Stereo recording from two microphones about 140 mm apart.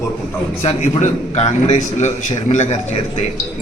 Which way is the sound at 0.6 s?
50° left (ahead or behind).